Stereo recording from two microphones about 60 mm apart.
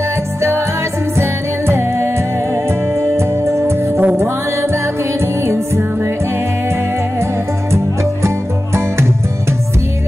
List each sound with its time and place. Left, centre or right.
0.4 s music: right
5.2 s music: right
7.7 s music: right